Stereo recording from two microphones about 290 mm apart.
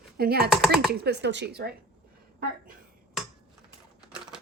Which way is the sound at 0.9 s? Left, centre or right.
Right.